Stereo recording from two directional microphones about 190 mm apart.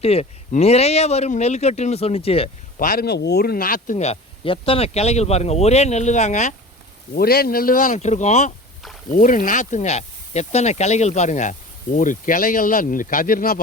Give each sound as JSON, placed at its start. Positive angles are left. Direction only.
{"t": 0.0, "sound": "speech", "side_deg": 30}
{"t": 2.7, "sound": "speech", "side_deg": 45}
{"t": 7.2, "sound": "speech", "side_deg": 55}